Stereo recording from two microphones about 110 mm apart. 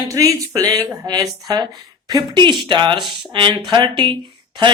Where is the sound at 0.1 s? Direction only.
30° right (ahead or behind).